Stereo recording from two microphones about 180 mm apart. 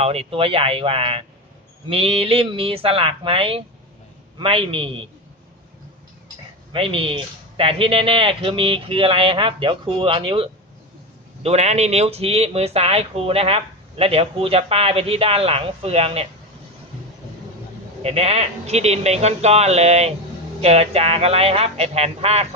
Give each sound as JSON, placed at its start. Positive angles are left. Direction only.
{"t": 0.0, "sound": "speech", "side_deg": -35}
{"t": 6.7, "sound": "a man's voice", "side_deg": -30}
{"t": 11.4, "sound": "speech", "side_deg": -40}
{"t": 18.0, "sound": "speech", "side_deg": -35}